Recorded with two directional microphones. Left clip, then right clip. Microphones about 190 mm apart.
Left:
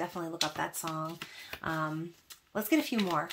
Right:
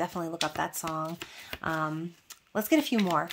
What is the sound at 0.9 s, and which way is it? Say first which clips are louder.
Speech: right 4 dB; 30° right (ahead or behind).